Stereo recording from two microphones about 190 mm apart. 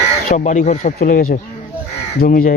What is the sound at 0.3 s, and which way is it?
Speech, 40° left (ahead or behind).